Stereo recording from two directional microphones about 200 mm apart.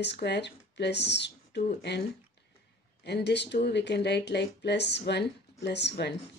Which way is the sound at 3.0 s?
55° left (ahead or behind).